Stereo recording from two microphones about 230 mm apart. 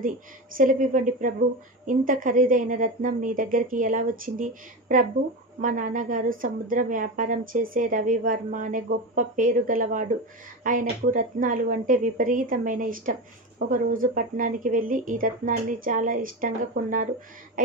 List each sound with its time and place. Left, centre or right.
0.6 s a woman's voice: right